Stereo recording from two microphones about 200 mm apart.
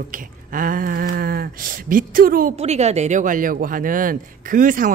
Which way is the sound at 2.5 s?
35° right (ahead or behind).